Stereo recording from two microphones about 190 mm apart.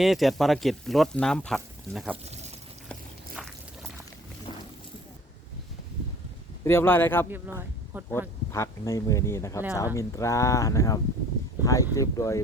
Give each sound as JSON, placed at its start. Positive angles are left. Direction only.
{"t": 0.0, "sound": "speech", "side_deg": 0}
{"t": 3.4, "sound": "a sound", "side_deg": 0}
{"t": 6.7, "sound": "speech", "side_deg": 10}
{"t": 7.3, "sound": "speech", "side_deg": -10}
{"t": 8.5, "sound": "speech", "side_deg": 15}